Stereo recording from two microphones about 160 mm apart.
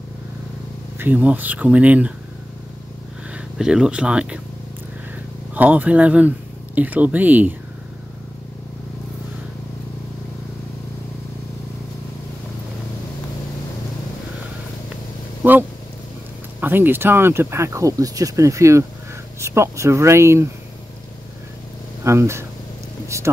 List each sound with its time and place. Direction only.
0.9 s speech: 10° right (ahead or behind)
3.3 s speech: 5° right (ahead or behind)
5.5 s speech: 10° right (ahead or behind)
15.4 s a sound: 10° right (ahead or behind)
16.5 s speech: 10° right (ahead or behind)
22.0 s speech: 15° right (ahead or behind)